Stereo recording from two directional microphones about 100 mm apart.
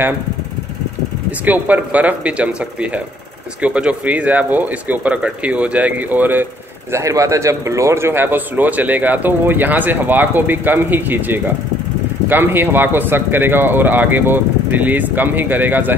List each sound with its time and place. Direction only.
1.4 s speech: 15° right (ahead or behind)
6.9 s speech: 30° right (ahead or behind)